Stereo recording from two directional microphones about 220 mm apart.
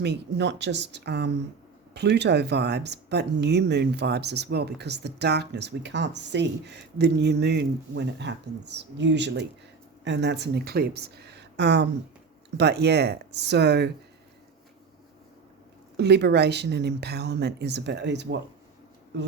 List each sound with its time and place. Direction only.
0.0 s speech: 50° right (ahead or behind)
16.0 s speech: 50° right (ahead or behind)